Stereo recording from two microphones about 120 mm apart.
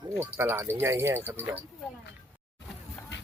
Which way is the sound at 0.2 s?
20° right (ahead or behind).